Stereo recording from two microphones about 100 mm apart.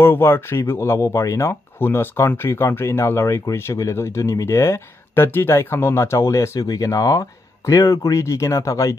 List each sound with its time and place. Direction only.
0.0 s speech: 25° left (ahead or behind)